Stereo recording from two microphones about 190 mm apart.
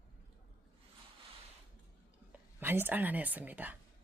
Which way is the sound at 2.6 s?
10° right (ahead or behind).